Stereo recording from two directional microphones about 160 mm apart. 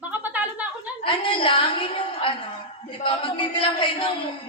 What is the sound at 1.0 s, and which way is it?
A woman's voice, 30° left (ahead or behind).